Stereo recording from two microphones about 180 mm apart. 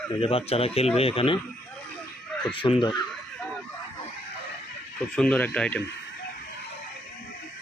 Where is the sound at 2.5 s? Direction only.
30° left (ahead or behind).